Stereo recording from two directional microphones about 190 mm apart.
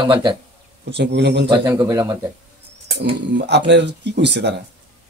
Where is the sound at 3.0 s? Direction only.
60° right (ahead or behind).